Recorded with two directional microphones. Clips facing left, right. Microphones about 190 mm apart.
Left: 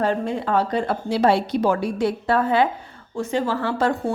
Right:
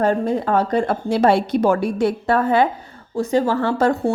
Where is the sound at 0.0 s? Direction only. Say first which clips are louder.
Right 4 dB; 45° right (ahead or behind).